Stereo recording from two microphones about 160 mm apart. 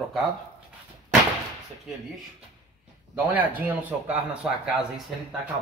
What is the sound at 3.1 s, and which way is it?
A man's voice, 10° right (ahead or behind).